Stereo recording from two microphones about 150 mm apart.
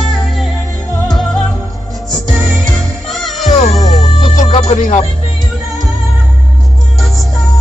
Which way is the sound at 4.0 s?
45° left (ahead or behind).